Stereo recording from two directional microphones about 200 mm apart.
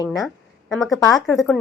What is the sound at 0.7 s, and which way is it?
Speech, centre (ahead or behind).